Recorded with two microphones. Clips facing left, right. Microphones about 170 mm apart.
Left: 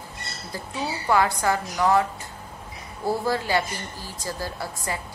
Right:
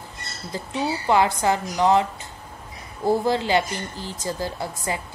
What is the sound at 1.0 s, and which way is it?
A woman's voice, 20° right (ahead or behind).